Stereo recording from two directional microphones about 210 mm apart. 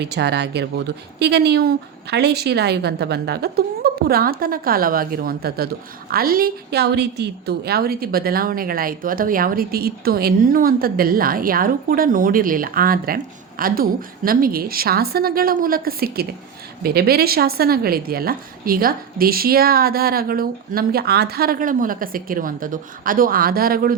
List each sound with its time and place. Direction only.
0.0 s speech: 50° right (ahead or behind)